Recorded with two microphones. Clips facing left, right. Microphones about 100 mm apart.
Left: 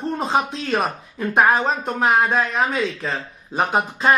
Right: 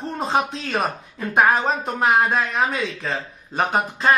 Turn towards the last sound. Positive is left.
turn(degrees=0)  # may be behind; listen again after turning